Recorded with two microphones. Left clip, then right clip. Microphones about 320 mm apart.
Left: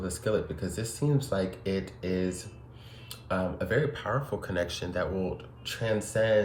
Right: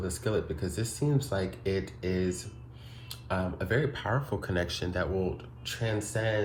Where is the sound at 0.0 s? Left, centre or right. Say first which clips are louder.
Left 2 dB; centre.